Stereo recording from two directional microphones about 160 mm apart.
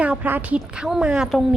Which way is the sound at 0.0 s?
10° right (ahead or behind).